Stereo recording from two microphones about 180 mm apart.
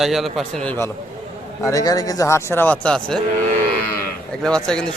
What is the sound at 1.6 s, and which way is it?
A man's voice, 20° left (ahead or behind).